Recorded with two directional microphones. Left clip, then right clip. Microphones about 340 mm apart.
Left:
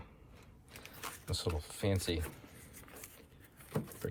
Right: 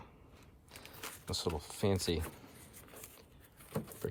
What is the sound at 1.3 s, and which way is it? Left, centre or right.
Speech, centre.